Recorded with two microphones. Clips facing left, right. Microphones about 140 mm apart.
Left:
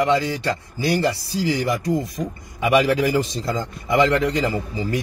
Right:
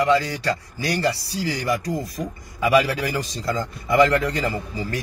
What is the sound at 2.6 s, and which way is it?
A man's voice, 25° left (ahead or behind).